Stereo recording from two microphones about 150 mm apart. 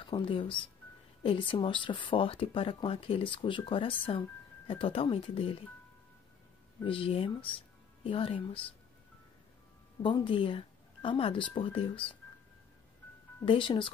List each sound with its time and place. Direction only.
0.0 s speech: 35° left (ahead or behind)
6.8 s speech: 35° left (ahead or behind)
10.0 s speech: 35° left (ahead or behind)
13.5 s speech: 35° left (ahead or behind)